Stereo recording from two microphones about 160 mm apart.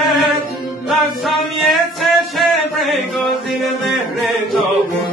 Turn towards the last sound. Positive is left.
turn(degrees=0)  # may be behind; listen again after turning